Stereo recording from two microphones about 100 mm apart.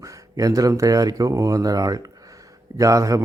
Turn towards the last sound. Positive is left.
turn(degrees=-35)  # may be behind; listen again after turning